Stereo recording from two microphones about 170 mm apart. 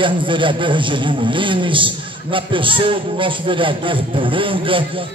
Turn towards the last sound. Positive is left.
turn(degrees=-30)  # may be behind; listen again after turning